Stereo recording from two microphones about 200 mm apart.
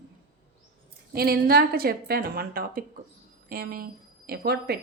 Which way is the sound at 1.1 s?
50° right (ahead or behind).